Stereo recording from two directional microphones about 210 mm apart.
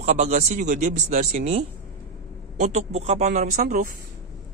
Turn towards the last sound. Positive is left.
turn(degrees=-40)  # may be behind; listen again after turning